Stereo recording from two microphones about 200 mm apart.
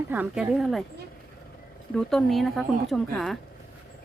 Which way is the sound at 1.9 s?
5° left (ahead or behind).